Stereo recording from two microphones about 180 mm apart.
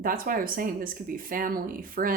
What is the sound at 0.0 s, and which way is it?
Speech, 50° right (ahead or behind).